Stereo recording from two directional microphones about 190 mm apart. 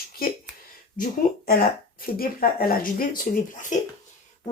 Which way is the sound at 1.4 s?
50° left (ahead or behind).